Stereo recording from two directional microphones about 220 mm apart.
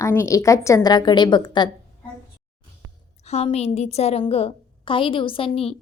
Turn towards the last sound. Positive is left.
turn(degrees=25)  # may be behind; listen again after turning